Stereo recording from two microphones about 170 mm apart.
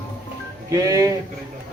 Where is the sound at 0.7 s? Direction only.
20° right (ahead or behind).